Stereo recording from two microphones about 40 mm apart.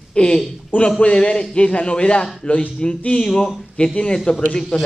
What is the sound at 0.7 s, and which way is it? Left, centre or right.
Speech, left.